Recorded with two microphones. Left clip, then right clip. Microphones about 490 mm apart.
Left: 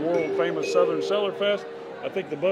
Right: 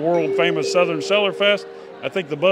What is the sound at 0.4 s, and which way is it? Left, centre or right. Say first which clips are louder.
A man's voice: right 5 dB; right.